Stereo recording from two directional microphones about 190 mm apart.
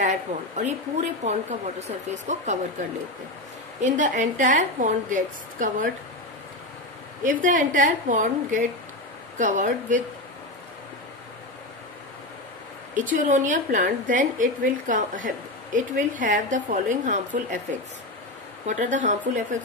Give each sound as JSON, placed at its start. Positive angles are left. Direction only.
{"t": 0.0, "sound": "a woman's voice", "side_deg": -40}
{"t": 3.8, "sound": "a woman's voice", "side_deg": -40}
{"t": 7.2, "sound": "a woman's voice", "side_deg": -45}
{"t": 12.9, "sound": "a woman's voice", "side_deg": -40}
{"t": 18.7, "sound": "a woman's voice", "side_deg": -40}